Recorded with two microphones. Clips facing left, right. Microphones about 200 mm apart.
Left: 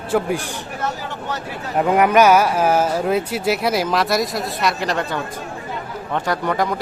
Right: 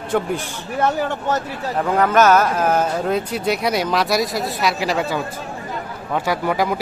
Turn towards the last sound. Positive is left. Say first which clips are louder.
# right 1 dB
turn(degrees=-5)  # may be behind; listen again after turning